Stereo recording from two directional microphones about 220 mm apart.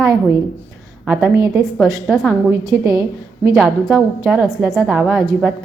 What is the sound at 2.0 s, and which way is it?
A woman's voice, centre (ahead or behind).